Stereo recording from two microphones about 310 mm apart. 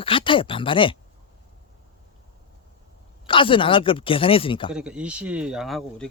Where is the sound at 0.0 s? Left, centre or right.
Centre.